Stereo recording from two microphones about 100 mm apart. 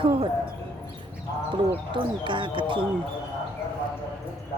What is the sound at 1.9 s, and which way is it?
Speech, 55° right (ahead or behind).